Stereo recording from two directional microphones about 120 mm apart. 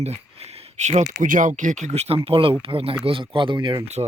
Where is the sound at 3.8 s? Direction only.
65° right (ahead or behind).